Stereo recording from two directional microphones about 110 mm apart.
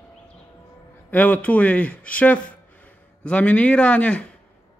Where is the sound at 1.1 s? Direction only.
15° left (ahead or behind).